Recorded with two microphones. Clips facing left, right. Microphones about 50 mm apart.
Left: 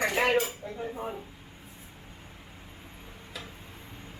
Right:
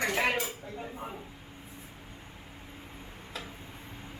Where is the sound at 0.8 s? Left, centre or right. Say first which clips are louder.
Left 7 dB; left.